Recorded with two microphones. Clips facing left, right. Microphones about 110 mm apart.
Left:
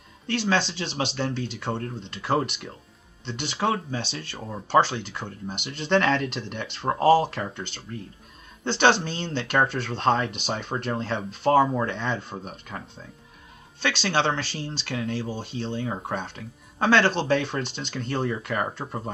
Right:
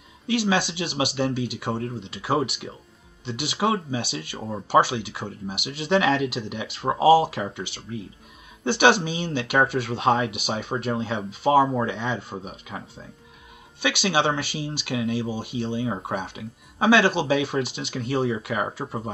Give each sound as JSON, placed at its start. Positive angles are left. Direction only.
{"t": 0.3, "sound": "speech", "side_deg": -10}